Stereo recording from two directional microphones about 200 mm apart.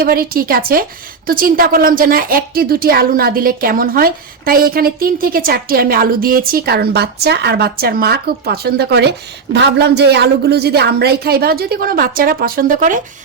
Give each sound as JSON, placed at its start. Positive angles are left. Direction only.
{"t": 0.0, "sound": "a woman's voice", "side_deg": -45}